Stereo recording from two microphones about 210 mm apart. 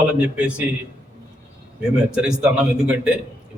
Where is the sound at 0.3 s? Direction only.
5° right (ahead or behind).